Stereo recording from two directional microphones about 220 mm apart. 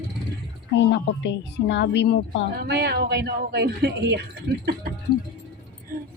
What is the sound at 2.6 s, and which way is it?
Speech, 45° right (ahead or behind).